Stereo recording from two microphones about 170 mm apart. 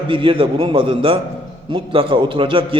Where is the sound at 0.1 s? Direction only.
30° right (ahead or behind).